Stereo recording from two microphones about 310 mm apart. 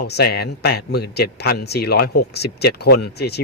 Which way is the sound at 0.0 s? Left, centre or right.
Left.